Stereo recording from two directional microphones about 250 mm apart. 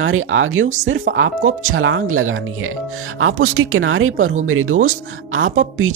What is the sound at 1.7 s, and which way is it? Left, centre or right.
Speech, right.